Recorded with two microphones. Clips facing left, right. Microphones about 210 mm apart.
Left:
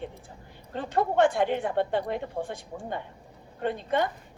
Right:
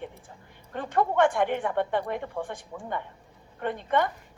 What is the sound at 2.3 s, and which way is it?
Speech, 35° left (ahead or behind).